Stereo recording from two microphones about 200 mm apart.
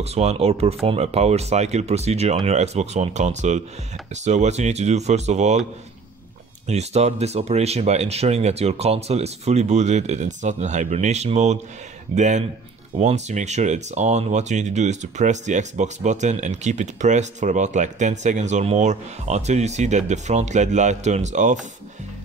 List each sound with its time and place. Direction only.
0.0 s speech: 30° right (ahead or behind)
6.7 s speech: 35° right (ahead or behind)